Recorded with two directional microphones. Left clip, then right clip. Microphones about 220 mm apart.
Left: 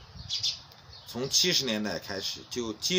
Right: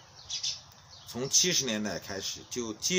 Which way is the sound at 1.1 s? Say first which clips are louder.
Left 1 dB; 5° left (ahead or behind).